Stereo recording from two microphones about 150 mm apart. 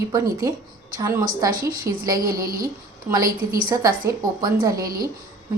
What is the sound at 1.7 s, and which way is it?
Speech, 75° right (ahead or behind).